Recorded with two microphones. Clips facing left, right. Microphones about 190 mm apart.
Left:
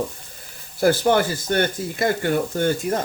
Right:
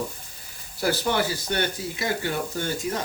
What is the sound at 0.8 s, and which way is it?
Speech, 50° left (ahead or behind).